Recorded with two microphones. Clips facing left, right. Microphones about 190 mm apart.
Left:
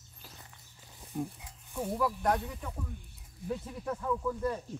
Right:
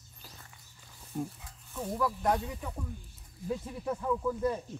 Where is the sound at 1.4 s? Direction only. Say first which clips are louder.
Left 2 dB; 15° left (ahead or behind).